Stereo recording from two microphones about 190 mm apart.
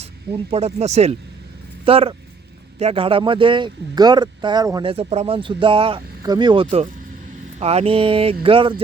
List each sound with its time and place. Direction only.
0.3 s speech: 30° right (ahead or behind)